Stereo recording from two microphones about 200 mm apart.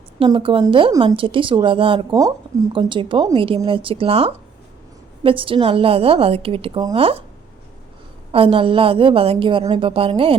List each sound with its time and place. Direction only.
0.2 s speech: 25° right (ahead or behind)
8.3 s speech: 30° right (ahead or behind)